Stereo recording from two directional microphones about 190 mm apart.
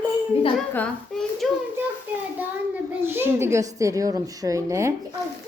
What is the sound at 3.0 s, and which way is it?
A woman's voice, 10° right (ahead or behind).